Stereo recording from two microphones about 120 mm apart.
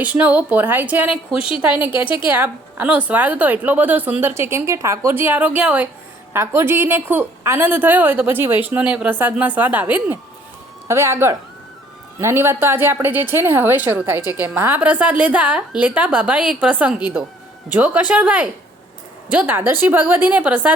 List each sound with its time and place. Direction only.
0.0 s a woman's voice: 10° right (ahead or behind)
1.4 s a woman's voice: 50° left (ahead or behind)
1.8 s a woman's voice: 15° right (ahead or behind)